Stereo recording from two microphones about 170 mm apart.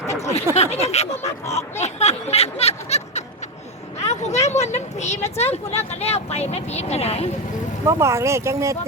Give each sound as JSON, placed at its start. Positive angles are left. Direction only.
{"t": 0.5, "sound": "speech", "side_deg": 40}
{"t": 1.5, "sound": "a sound", "side_deg": 15}
{"t": 1.8, "sound": "snicker", "side_deg": 40}
{"t": 4.0, "sound": "speech", "side_deg": 40}
{"t": 7.9, "sound": "speech", "side_deg": -15}